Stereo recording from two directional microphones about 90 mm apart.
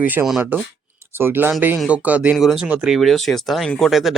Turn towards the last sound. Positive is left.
turn(degrees=0)  # may be behind; listen again after turning